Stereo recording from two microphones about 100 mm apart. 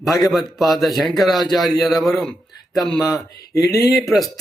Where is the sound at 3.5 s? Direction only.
35° left (ahead or behind).